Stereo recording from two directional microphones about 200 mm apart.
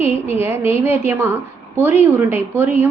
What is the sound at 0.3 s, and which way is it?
A woman's voice, 10° right (ahead or behind).